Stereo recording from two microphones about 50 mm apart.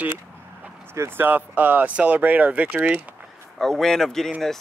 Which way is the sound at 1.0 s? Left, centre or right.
Right.